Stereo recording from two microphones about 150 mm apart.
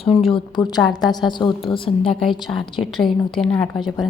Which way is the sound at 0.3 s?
30° left (ahead or behind).